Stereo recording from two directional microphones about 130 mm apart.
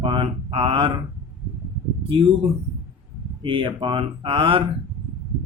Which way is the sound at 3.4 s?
40° right (ahead or behind).